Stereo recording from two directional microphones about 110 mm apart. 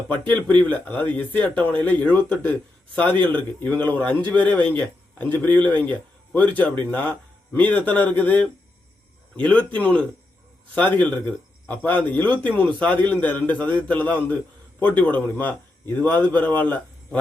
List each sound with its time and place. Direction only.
0.3 s speech: 15° left (ahead or behind)